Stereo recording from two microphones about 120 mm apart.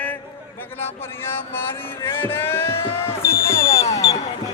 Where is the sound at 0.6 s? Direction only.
20° left (ahead or behind).